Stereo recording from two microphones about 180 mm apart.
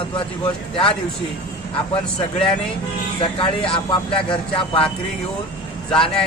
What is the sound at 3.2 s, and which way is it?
Speech, 30° left (ahead or behind).